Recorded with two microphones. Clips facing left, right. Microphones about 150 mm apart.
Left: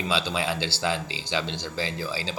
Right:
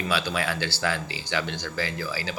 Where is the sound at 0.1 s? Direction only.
20° left (ahead or behind).